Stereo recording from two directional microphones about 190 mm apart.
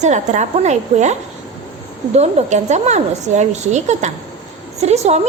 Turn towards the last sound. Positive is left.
turn(degrees=-35)  # may be behind; listen again after turning